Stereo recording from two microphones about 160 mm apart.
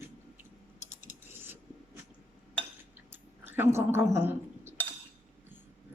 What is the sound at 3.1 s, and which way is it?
Cutlery, 15° right (ahead or behind).